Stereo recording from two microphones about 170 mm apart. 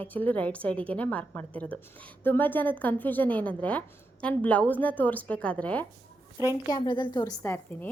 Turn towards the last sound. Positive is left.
turn(degrees=15)  # may be behind; listen again after turning